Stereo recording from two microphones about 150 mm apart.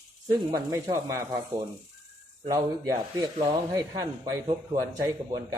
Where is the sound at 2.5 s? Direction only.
25° right (ahead or behind).